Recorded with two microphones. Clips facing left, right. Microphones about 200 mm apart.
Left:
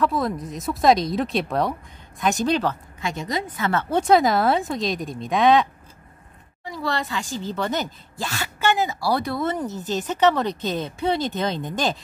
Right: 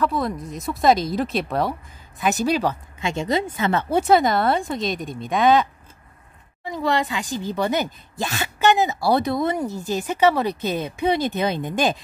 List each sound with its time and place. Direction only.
0.0 s speech: centre (ahead or behind)
3.0 s a woman's voice: 25° right (ahead or behind)
3.9 s speech: 5° right (ahead or behind)
6.6 s speech: 20° right (ahead or behind)